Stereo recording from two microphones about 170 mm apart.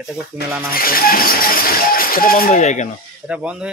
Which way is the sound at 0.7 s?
60° left (ahead or behind).